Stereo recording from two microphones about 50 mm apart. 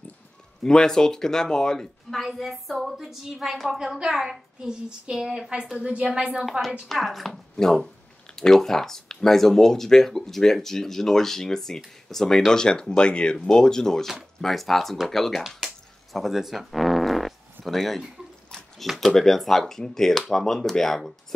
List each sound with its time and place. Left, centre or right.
0.7 s speech: centre
2.1 s a woman's voice: centre
6.9 s speech: centre
15.4 s fart: centre
18.8 s speech: centre